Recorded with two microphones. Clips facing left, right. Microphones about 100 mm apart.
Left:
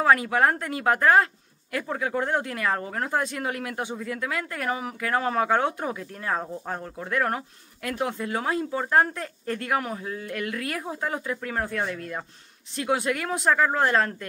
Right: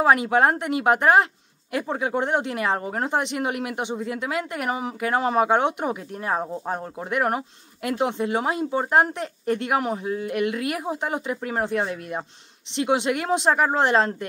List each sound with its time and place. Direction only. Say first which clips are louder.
0.0 s speech: right 2 dB; 20° right (ahead or behind)